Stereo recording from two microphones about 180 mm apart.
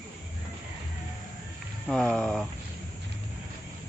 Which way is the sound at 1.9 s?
5° left (ahead or behind).